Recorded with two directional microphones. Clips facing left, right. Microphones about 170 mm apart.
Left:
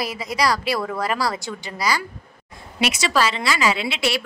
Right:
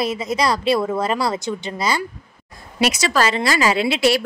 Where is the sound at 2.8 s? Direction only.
40° right (ahead or behind).